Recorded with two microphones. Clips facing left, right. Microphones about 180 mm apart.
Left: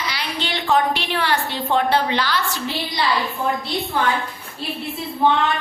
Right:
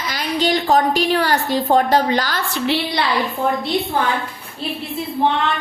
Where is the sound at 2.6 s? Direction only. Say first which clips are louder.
Right 7 dB; 70° right (ahead or behind).